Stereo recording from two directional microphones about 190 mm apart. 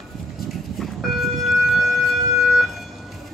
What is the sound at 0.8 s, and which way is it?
Vehicle, centre (ahead or behind).